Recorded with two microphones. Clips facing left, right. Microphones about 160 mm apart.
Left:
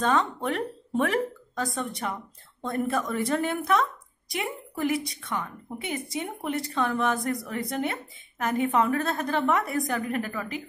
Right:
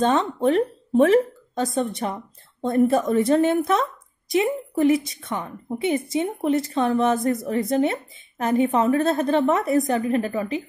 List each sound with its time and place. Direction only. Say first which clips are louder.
0.0 s a woman's voice: right 6 dB; 25° right (ahead or behind)